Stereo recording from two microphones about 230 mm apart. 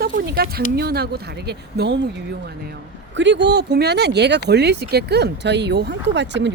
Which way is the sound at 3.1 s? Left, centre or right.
Right.